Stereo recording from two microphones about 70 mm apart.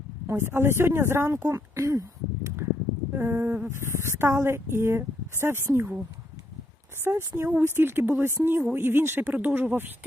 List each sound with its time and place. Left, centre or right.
0.3 s a woman's voice: right
3.1 s a sound: right
3.7 s a woman's voice: right
7.0 s a woman's voice: right